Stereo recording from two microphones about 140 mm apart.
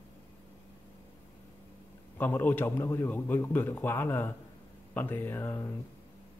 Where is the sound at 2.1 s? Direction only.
15° left (ahead or behind).